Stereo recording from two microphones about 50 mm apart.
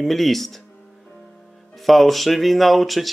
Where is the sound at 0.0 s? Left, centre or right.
Centre.